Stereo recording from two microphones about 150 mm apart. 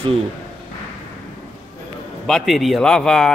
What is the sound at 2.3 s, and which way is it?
A man's voice, centre (ahead or behind).